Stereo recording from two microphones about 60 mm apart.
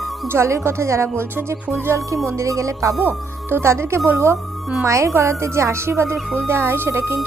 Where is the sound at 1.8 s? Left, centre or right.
Right.